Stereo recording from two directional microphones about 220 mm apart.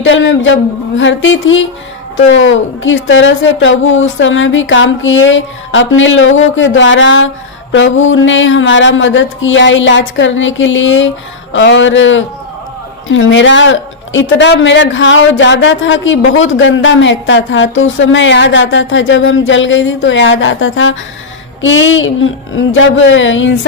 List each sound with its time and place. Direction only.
0.0 s a woman's voice: 60° left (ahead or behind)